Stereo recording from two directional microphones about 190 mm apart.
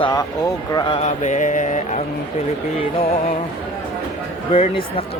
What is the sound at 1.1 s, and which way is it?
Mantra, 40° left (ahead or behind).